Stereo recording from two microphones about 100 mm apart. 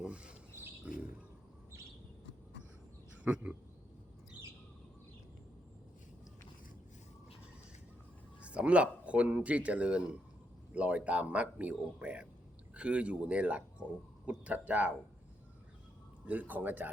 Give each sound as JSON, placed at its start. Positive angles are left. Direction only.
{"t": 0.0, "sound": "a sound", "side_deg": -10}
{"t": 3.2, "sound": "speech", "side_deg": -15}
{"t": 8.4, "sound": "speech", "side_deg": -10}
{"t": 16.2, "sound": "speech", "side_deg": -15}